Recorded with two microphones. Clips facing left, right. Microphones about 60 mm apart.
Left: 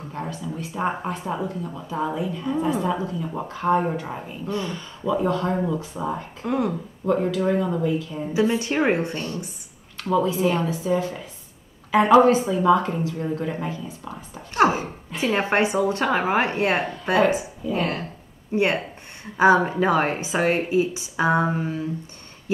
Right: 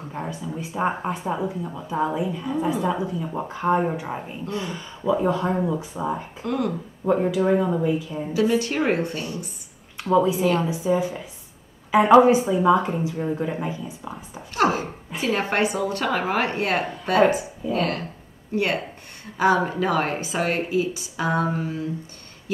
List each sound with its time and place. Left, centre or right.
0.1 s speech: centre
6.4 s a woman's voice: centre
7.1 s speech: centre
8.3 s a woman's voice: left
9.9 s speech: centre
14.5 s speech: left
15.1 s speech: centre
15.5 s a woman's voice: left